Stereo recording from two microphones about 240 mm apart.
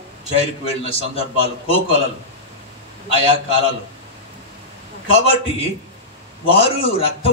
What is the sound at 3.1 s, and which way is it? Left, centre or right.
Speech, left.